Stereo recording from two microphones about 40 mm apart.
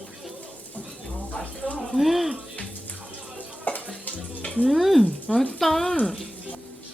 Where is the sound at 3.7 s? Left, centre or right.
Left.